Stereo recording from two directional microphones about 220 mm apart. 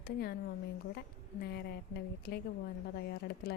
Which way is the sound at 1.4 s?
45° left (ahead or behind).